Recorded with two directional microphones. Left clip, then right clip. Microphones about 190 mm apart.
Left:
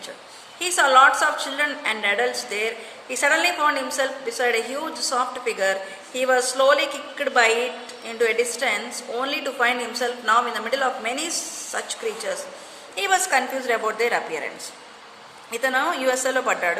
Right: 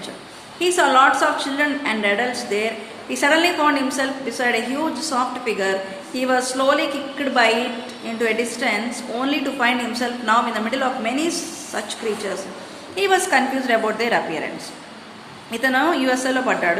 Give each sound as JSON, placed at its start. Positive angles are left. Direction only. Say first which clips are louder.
{"t": 0.6, "sound": "a woman's voice", "louder": "right 1 dB", "side_deg": 25}
{"t": 15.6, "sound": "a woman's voice", "louder": "right 3 dB", "side_deg": 20}